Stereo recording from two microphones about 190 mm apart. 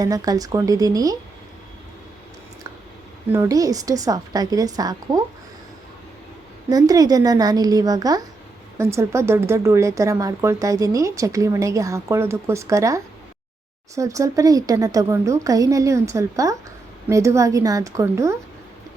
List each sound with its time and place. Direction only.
0.0 s a woman's voice: 20° right (ahead or behind)
3.3 s a woman's voice: 15° right (ahead or behind)
6.7 s a woman's voice: 20° right (ahead or behind)